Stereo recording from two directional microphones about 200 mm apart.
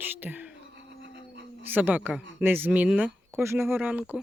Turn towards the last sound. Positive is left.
turn(degrees=-5)  # may be behind; listen again after turning